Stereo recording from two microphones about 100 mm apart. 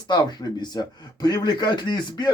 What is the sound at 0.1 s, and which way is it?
Speech, 45° left (ahead or behind).